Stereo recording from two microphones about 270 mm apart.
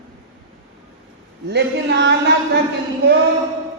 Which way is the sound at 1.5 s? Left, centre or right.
Right.